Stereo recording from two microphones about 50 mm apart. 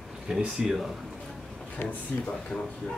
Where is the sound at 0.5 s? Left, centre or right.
Centre.